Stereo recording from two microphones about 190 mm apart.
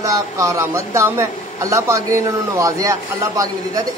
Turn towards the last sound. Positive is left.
turn(degrees=-15)  # may be behind; listen again after turning